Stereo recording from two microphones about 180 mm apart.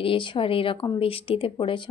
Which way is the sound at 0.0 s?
30° left (ahead or behind).